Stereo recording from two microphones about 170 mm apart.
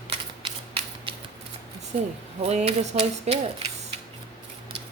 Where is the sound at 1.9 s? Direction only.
40° right (ahead or behind).